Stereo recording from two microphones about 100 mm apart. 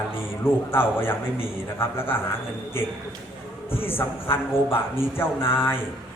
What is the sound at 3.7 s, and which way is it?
A man's voice, 20° left (ahead or behind).